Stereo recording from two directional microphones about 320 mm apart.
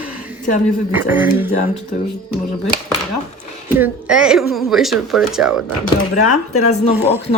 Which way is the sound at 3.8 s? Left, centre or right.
Centre.